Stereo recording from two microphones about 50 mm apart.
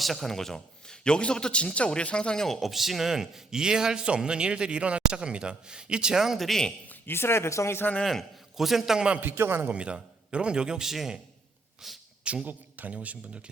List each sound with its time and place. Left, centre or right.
0.0 s a man's voice: centre
6.5 s a man's voice: centre
7.1 s speech: left
8.5 s a man's voice: centre
9.0 s speech: right
9.2 s a man's voice: right
9.7 s a man's voice: right
12.2 s speech: right
12.5 s speech: right